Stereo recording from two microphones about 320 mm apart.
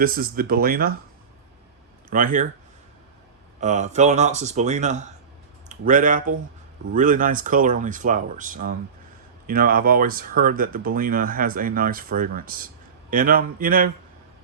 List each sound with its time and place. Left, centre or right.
0.0 s speech: right
2.0 s speech: right
3.6 s speech: right